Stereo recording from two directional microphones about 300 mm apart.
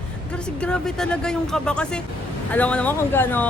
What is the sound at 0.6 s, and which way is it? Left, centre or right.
A woman's voice, centre.